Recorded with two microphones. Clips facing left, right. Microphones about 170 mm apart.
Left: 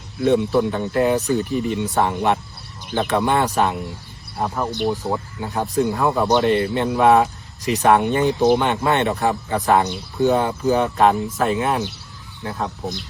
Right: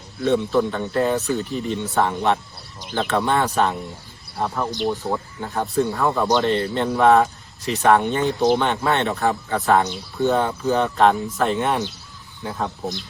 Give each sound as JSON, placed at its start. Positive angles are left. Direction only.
{"t": 0.3, "sound": "speech", "side_deg": 15}
{"t": 4.9, "sound": "speech", "side_deg": 5}
{"t": 11.3, "sound": "speech", "side_deg": 0}